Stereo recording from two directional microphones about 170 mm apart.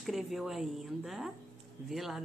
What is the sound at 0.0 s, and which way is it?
A woman's voice, centre (ahead or behind).